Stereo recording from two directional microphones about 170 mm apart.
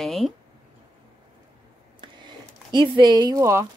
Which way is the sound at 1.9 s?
25° right (ahead or behind).